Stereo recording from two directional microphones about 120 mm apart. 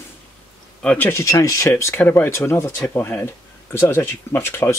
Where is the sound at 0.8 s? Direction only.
15° left (ahead or behind).